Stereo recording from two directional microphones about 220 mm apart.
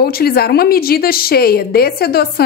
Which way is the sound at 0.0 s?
45° left (ahead or behind).